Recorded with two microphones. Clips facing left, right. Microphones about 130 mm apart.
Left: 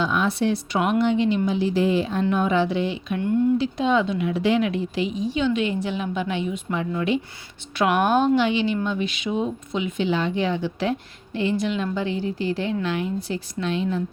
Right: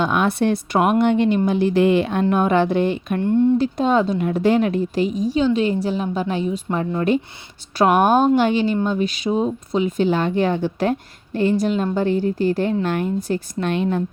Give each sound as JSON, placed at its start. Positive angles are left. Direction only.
{"t": 0.0, "sound": "a woman's voice", "side_deg": -55}